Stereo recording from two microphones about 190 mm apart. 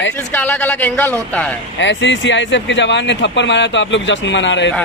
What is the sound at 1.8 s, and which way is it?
Speech, 70° left (ahead or behind).